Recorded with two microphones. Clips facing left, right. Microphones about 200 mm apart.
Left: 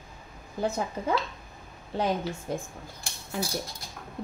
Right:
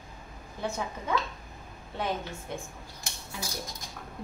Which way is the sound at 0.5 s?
35° left (ahead or behind).